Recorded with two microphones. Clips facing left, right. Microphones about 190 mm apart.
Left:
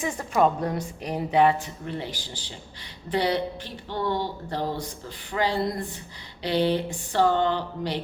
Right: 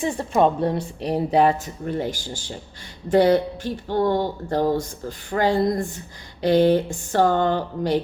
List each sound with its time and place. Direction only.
0.0 s a woman's voice: 30° right (ahead or behind); by 8.0 s 50° right (ahead or behind)